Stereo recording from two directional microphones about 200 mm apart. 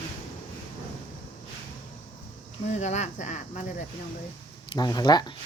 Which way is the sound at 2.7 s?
35° left (ahead or behind).